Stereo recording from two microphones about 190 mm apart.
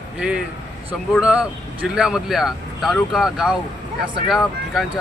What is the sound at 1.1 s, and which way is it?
A man's voice, 5° right (ahead or behind).